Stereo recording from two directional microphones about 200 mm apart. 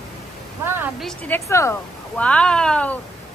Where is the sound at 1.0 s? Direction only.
10° left (ahead or behind).